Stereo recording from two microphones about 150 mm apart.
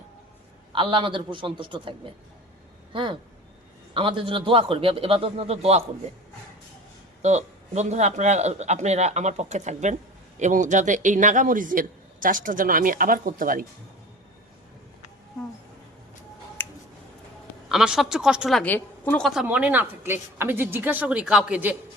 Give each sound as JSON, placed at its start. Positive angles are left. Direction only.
{"t": 0.7, "sound": "a man's voice", "side_deg": -35}
{"t": 7.2, "sound": "a man's voice", "side_deg": -50}
{"t": 16.6, "sound": "music", "side_deg": 15}
{"t": 17.7, "sound": "a woman's voice", "side_deg": -5}
{"t": 18.6, "sound": "a woman's voice", "side_deg": 10}